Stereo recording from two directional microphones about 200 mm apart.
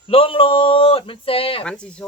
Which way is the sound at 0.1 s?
25° left (ahead or behind).